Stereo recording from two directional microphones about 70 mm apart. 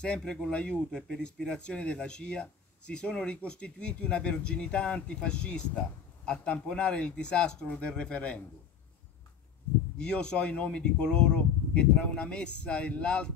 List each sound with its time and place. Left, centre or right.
0.0 s speech: centre
9.9 s speech: centre